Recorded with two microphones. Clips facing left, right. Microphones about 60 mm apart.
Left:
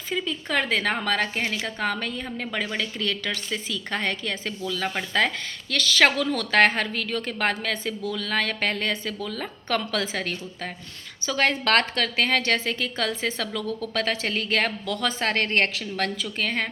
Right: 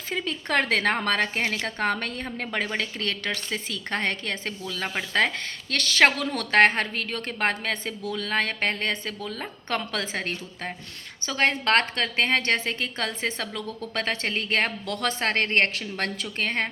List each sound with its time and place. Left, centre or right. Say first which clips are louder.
0.3 s a woman's voice: right 2 dB; right
6.0 s a woman's voice: even; right